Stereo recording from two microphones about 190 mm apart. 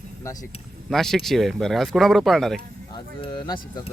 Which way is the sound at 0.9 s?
Centre (ahead or behind).